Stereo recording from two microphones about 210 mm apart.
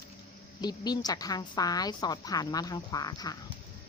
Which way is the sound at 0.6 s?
20° left (ahead or behind).